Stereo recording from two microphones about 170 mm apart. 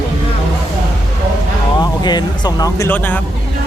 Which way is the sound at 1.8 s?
25° left (ahead or behind).